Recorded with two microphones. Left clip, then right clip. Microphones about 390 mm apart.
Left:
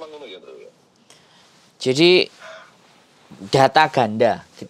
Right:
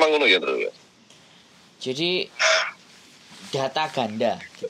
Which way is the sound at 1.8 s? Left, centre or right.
Left.